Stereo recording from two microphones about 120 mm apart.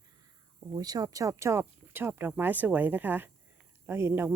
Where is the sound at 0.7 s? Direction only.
30° right (ahead or behind).